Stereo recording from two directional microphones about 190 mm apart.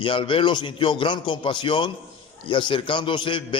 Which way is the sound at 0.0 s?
25° left (ahead or behind).